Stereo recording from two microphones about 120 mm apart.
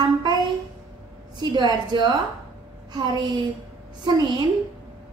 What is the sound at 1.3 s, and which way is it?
A woman's voice, 35° right (ahead or behind).